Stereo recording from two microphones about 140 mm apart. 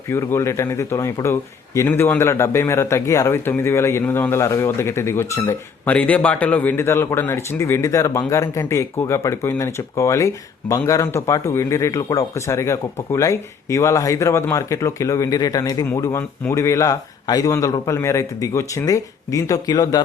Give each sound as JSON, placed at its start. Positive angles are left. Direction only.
{"t": 0.1, "sound": "a man's voice", "side_deg": 20}